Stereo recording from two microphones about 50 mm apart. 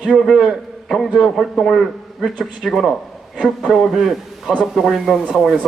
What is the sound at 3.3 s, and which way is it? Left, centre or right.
Speech, centre.